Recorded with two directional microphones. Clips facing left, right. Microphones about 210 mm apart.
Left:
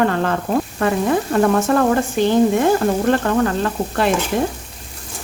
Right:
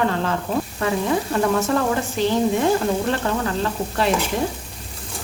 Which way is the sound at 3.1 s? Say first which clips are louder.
Left 6 dB; 55° left (ahead or behind).